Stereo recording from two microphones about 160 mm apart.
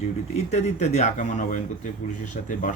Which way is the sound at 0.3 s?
45° left (ahead or behind).